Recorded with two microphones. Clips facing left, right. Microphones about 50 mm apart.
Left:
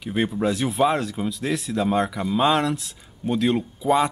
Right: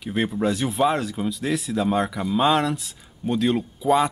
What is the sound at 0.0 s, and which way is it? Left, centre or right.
Speech, centre.